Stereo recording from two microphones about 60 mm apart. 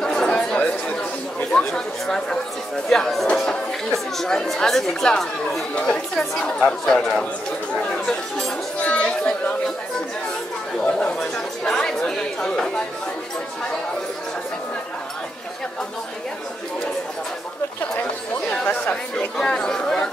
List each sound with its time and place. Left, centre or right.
0.0 s chatter: centre
2.9 s speech: centre
8.7 s chatter: left
10.9 s chatter: centre
12.4 s speech: centre
19.1 s speech: centre